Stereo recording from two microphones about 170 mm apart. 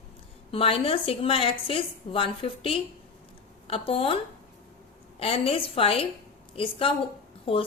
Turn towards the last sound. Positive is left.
turn(degrees=30)  # may be behind; listen again after turning